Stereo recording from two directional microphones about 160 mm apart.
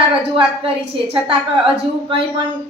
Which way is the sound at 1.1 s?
35° right (ahead or behind).